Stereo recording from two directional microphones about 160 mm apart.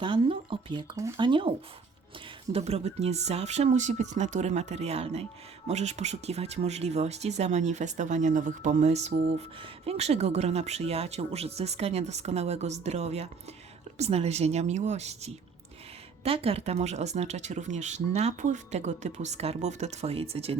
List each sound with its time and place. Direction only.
0.0 s speech: 30° right (ahead or behind)
1.3 s speech: 30° right (ahead or behind)